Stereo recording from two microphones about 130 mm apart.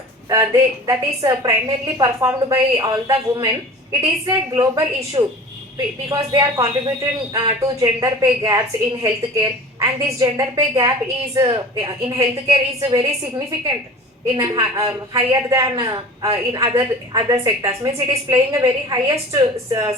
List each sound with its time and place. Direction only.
0.3 s a man's voice: 25° right (ahead or behind)
3.1 s a woman's voice: 40° right (ahead or behind)
14.3 s a man's voice: 25° right (ahead or behind)